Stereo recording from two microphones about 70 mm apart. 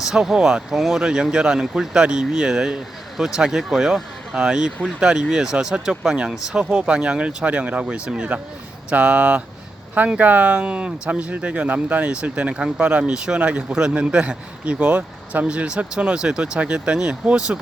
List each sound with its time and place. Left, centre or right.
0.0 s speech: centre